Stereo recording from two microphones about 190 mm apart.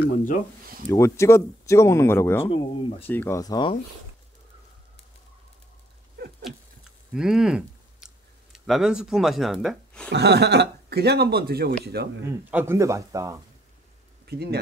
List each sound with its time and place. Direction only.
0.9 s speech: 15° left (ahead or behind)
2.4 s speech: 30° left (ahead or behind)
3.0 s speech: 10° left (ahead or behind)
6.2 s patter: 60° right (ahead or behind)
7.2 s speech: 5° right (ahead or behind)
10.0 s speech: 60° right (ahead or behind)
12.4 s speech: 10° right (ahead or behind)
14.2 s speech: 60° right (ahead or behind)